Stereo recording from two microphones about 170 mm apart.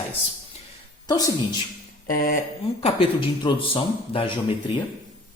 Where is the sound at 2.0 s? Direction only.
55° left (ahead or behind).